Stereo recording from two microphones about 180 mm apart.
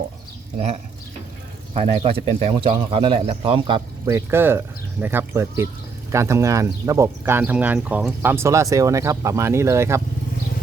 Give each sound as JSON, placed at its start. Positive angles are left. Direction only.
{"t": 1.7, "sound": "speech", "side_deg": -30}
{"t": 4.0, "sound": "speech", "side_deg": -15}